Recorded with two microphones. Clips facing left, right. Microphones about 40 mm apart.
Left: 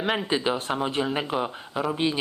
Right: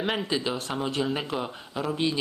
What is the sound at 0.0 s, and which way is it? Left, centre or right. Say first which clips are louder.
Speech: left 2 dB; centre.